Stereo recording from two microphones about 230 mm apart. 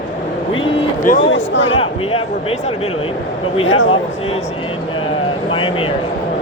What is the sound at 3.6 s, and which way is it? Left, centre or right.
Speech, left.